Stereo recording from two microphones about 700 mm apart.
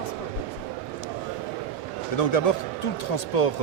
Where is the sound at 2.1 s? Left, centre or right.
Left.